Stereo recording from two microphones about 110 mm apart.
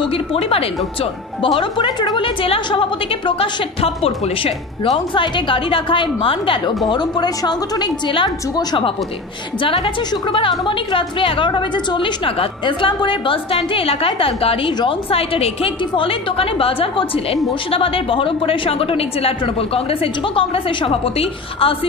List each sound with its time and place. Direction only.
0.0 s a woman's voice: 60° left (ahead or behind)
6.9 s a woman's voice: 40° left (ahead or behind); by 21.7 s 55° left (ahead or behind)